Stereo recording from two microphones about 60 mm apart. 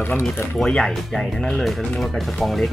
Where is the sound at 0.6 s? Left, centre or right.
Centre.